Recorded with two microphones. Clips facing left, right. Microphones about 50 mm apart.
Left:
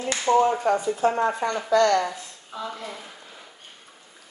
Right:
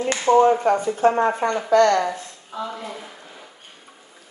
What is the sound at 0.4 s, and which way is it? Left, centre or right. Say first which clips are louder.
Speech: right 4 dB; right.